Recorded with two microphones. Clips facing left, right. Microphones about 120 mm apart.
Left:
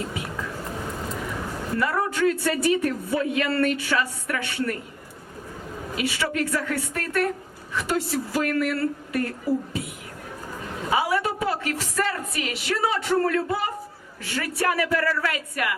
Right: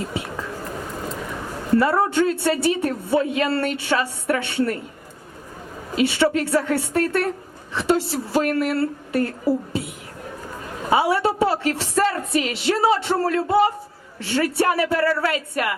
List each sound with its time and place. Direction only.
0.1 s a man's voice: 30° right (ahead or behind)
1.7 s a man's voice: 30° right (ahead or behind)
6.0 s a man's voice: 30° right (ahead or behind)